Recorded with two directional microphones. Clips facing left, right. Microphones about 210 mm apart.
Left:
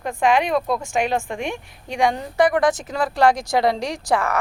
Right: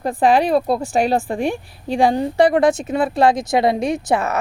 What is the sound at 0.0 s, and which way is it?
A woman's voice, 35° right (ahead or behind).